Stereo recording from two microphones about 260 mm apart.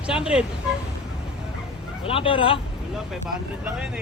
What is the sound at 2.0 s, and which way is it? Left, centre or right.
Speech, left.